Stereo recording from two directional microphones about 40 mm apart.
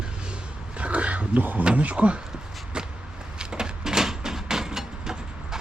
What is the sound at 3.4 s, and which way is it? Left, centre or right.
Vehicle, centre.